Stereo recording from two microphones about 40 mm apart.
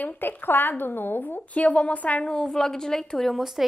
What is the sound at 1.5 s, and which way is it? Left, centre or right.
Speech, left.